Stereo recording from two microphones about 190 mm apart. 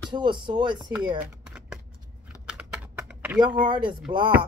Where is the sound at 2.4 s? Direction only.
5° right (ahead or behind).